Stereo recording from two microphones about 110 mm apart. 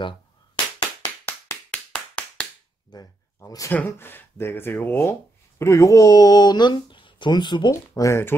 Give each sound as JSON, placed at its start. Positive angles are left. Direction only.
{"t": 1.7, "sound": "clapping", "side_deg": 10}
{"t": 2.9, "sound": "speech", "side_deg": 35}
{"t": 3.7, "sound": "speech", "side_deg": 15}
{"t": 5.6, "sound": "speech", "side_deg": 30}
{"t": 8.0, "sound": "speech", "side_deg": 25}